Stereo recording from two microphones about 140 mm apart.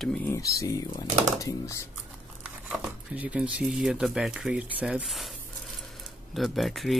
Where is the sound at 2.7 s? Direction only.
10° right (ahead or behind).